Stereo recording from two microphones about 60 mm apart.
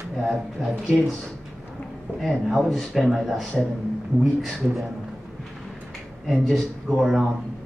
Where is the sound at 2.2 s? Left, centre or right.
Centre.